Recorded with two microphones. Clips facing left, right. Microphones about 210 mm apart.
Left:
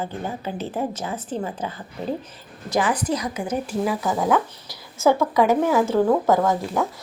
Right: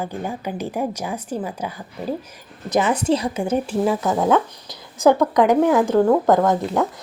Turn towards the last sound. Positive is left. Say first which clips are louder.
# right 3 dB
turn(degrees=0)  # may be behind; listen again after turning